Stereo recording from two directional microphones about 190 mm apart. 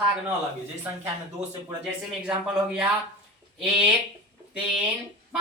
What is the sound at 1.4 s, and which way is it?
Speech, 35° right (ahead or behind).